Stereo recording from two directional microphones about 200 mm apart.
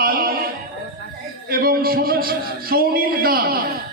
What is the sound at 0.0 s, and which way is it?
Music, 50° right (ahead or behind).